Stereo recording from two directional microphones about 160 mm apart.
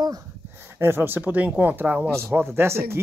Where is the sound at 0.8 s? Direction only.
15° right (ahead or behind).